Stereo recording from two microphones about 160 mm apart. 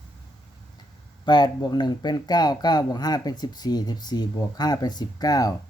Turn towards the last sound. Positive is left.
turn(degrees=25)  # may be behind; listen again after turning